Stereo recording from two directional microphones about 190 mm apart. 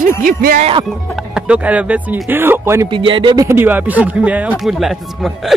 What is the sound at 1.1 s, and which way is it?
Speech, 5° right (ahead or behind).